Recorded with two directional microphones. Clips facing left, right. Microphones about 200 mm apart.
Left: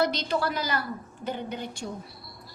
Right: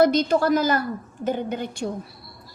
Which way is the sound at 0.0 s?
45° right (ahead or behind).